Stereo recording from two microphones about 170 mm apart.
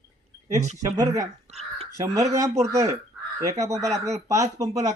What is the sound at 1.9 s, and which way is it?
A man's voice, 20° right (ahead or behind).